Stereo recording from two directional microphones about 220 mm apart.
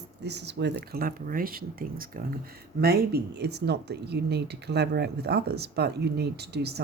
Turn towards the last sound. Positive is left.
turn(degrees=-50)  # may be behind; listen again after turning